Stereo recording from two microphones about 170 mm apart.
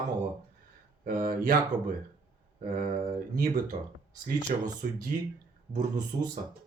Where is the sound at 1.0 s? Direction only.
55° right (ahead or behind).